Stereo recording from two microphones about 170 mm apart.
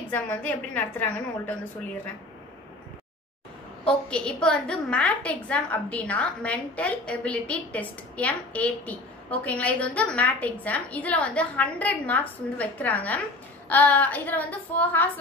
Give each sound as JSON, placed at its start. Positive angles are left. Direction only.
{"t": 0.1, "sound": "a woman's voice", "side_deg": 10}
{"t": 3.8, "sound": "a woman's voice", "side_deg": 5}